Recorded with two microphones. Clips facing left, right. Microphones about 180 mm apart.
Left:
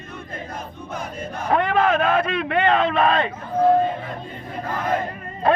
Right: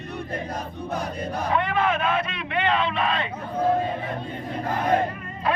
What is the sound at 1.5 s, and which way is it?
A man's voice, 45° left (ahead or behind).